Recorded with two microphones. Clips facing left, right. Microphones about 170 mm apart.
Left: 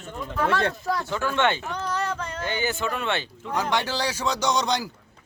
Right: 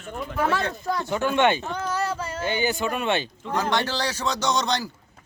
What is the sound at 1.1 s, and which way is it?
Speech, 20° right (ahead or behind).